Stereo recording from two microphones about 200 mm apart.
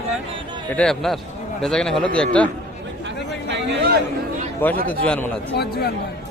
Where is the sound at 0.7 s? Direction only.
5° left (ahead or behind).